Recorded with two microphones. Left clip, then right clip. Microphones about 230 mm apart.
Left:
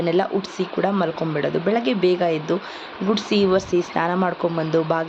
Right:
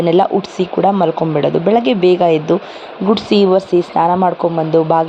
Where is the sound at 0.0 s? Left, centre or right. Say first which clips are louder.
Right 8 dB; right.